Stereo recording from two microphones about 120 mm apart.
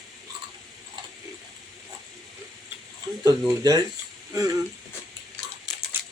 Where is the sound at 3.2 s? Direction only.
30° right (ahead or behind).